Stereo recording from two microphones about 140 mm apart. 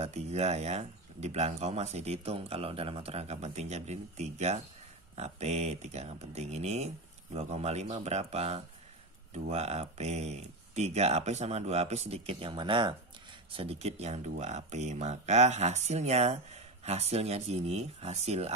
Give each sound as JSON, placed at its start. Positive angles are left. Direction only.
{"t": 0.0, "sound": "speech", "side_deg": -50}